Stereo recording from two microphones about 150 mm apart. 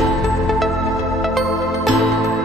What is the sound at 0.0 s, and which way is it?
Music, centre (ahead or behind).